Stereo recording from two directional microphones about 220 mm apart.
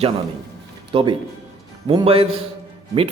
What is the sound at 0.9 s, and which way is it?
Speech, 25° right (ahead or behind).